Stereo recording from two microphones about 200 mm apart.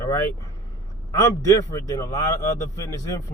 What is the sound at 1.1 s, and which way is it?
Speech, 15° left (ahead or behind).